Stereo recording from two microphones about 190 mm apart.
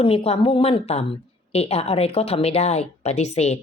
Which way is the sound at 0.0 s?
30° left (ahead or behind).